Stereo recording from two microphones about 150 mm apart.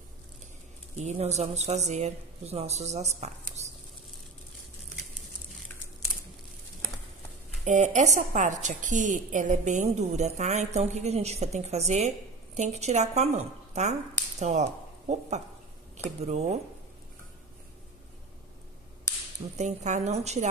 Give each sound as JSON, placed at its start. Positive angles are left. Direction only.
{"t": 0.9, "sound": "a woman's voice", "side_deg": -45}
{"t": 3.6, "sound": "a sound", "side_deg": -50}
{"t": 7.6, "sound": "a woman's voice", "side_deg": -55}
{"t": 19.5, "sound": "a woman's voice", "side_deg": -50}